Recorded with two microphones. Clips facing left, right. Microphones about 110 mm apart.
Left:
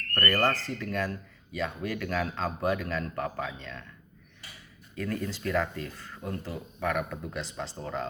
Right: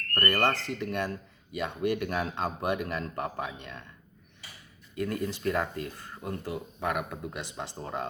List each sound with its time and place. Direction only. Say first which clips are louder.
0.2 s speech: even; 20° right (ahead or behind)
5.0 s speech: right 2 dB; 20° right (ahead or behind)